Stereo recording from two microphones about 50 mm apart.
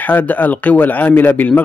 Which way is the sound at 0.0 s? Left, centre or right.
Left.